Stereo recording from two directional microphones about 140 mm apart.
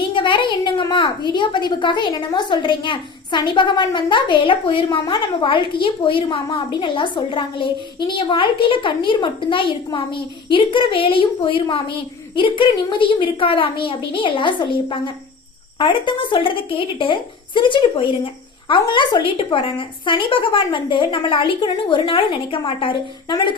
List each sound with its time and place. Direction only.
0.1 s a woman's voice: 35° left (ahead or behind)